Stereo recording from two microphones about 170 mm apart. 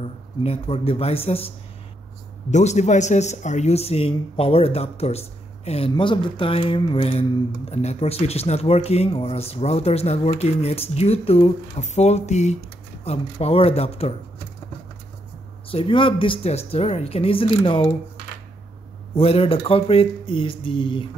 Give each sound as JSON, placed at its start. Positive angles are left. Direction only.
{"t": 0.0, "sound": "speech", "side_deg": 35}
{"t": 2.5, "sound": "speech", "side_deg": 40}
{"t": 15.7, "sound": "speech", "side_deg": 30}
{"t": 19.1, "sound": "speech", "side_deg": 35}